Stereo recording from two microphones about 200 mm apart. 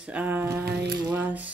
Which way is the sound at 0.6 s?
55° right (ahead or behind).